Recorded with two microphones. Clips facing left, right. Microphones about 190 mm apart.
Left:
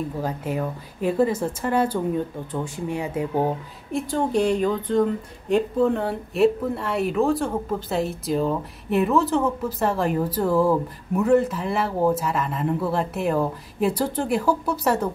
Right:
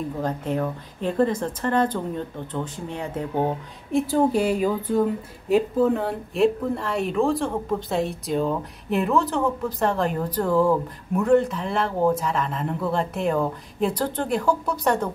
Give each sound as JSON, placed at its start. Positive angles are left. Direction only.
{"t": 0.2, "sound": "a woman's voice", "side_deg": 5}